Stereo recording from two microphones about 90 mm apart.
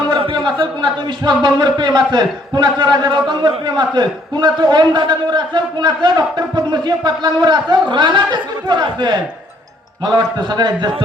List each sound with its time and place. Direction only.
0.1 s a man's voice: 55° right (ahead or behind)